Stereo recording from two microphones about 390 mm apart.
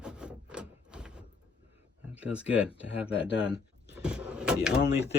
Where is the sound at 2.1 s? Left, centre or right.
Centre.